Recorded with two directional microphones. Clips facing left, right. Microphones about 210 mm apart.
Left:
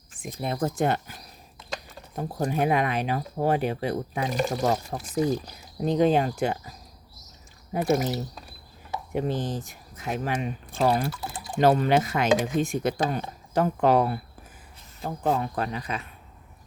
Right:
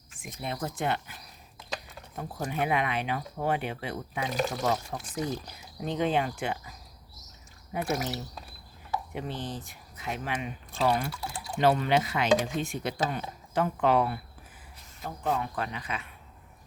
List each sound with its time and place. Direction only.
0.1 s speech: 35° left (ahead or behind)
4.4 s speech: centre (ahead or behind)
4.6 s speech: 40° left (ahead or behind)
9.1 s speech: 45° left (ahead or behind)
11.1 s speech: centre (ahead or behind)
11.6 s speech: 40° left (ahead or behind)